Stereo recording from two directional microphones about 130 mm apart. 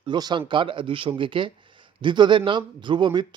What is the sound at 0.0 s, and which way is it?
Speech, 35° right (ahead or behind).